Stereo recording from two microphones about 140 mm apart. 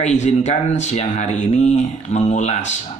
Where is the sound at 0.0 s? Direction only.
55° left (ahead or behind).